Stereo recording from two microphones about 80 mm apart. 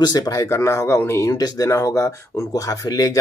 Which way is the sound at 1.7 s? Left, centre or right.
Left.